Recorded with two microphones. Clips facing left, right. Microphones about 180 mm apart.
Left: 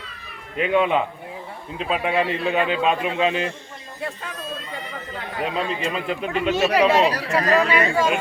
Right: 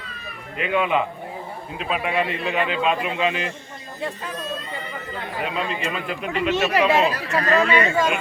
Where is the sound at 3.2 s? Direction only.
30° left (ahead or behind).